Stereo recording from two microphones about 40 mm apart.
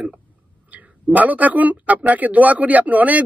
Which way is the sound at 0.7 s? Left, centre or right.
Right.